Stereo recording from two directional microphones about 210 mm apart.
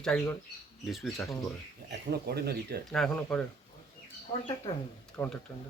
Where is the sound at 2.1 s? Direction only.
50° right (ahead or behind).